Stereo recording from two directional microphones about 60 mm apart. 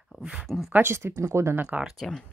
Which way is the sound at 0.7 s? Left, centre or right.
Right.